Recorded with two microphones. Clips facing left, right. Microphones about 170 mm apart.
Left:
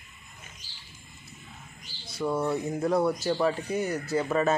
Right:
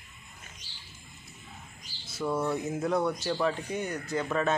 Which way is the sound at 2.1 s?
Centre (ahead or behind).